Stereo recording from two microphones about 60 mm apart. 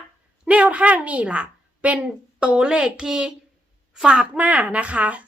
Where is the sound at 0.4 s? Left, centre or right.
Right.